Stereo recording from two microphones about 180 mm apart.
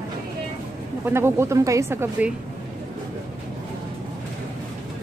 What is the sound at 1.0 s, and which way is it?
Speech, 15° right (ahead or behind).